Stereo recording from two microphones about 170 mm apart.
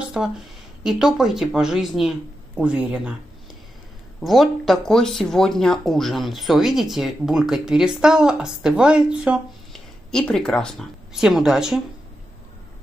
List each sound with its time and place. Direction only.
0.1 s speech: 5° right (ahead or behind)
4.2 s speech: centre (ahead or behind)